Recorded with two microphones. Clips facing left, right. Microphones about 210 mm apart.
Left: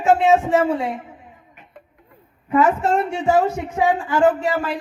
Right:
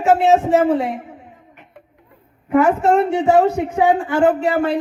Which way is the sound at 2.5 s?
60° right (ahead or behind).